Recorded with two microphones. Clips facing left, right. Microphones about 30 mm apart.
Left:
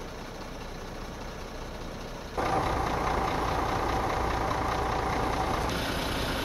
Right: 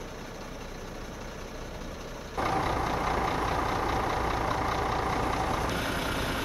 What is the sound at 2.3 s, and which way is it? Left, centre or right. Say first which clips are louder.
Vehicle: even; centre.